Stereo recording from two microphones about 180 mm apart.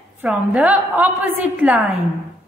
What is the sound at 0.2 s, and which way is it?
A woman's voice, 5° right (ahead or behind).